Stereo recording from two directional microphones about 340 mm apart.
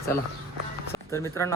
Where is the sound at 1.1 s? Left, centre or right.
Centre.